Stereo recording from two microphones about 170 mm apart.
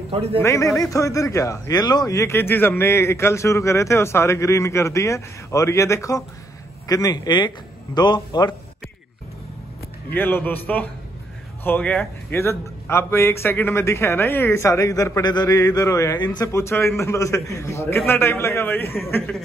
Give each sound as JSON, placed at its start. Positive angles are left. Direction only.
{"t": 0.1, "sound": "a man's voice", "side_deg": -35}
{"t": 0.4, "sound": "a man's voice", "side_deg": 15}
{"t": 10.1, "sound": "a man's voice", "side_deg": 10}
{"t": 11.6, "sound": "a man's voice", "side_deg": 10}